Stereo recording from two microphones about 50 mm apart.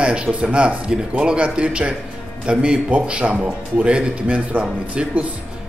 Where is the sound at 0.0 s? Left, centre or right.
Right.